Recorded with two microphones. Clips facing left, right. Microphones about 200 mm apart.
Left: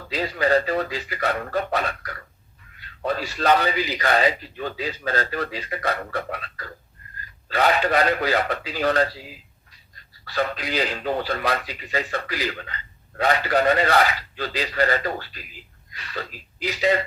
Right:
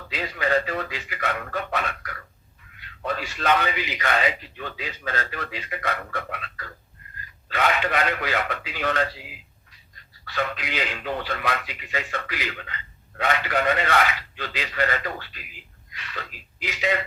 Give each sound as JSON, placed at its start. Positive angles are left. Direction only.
{"t": 0.1, "sound": "speech", "side_deg": 35}